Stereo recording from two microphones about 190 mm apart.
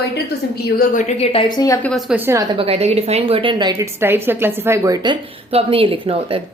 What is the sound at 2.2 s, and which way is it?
Speech, 15° right (ahead or behind).